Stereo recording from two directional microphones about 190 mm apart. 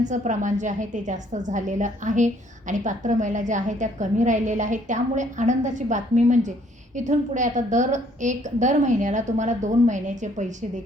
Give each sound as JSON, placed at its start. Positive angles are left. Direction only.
{"t": 0.0, "sound": "a woman's voice", "side_deg": -40}